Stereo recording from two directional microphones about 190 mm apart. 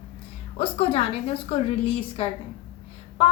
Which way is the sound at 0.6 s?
30° left (ahead or behind).